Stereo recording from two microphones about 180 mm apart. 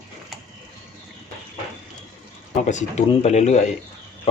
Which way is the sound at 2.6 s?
40° left (ahead or behind).